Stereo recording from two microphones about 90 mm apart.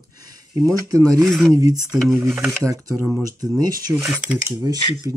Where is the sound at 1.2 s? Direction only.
Centre (ahead or behind).